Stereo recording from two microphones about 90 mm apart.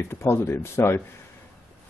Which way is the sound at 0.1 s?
30° left (ahead or behind).